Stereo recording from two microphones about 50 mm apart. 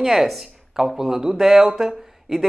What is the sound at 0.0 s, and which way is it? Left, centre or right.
A man's voice, centre.